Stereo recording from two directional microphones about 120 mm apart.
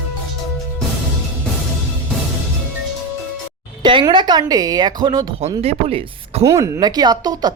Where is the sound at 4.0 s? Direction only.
40° right (ahead or behind).